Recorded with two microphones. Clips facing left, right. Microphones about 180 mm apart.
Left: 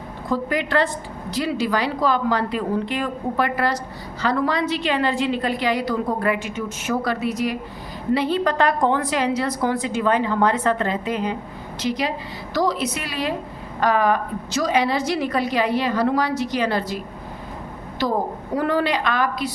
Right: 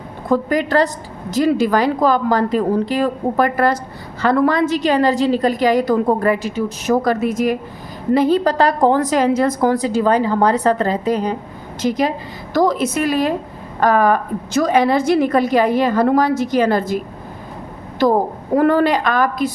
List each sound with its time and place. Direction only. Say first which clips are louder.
0.3 s a woman's voice: right 6 dB; 40° right (ahead or behind)
18.0 s a woman's voice: right 7 dB; 50° right (ahead or behind)